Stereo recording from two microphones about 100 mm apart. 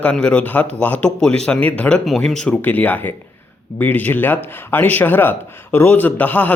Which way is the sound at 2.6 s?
15° left (ahead or behind).